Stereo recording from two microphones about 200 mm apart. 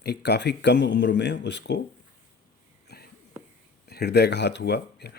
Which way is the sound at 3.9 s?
55° left (ahead or behind).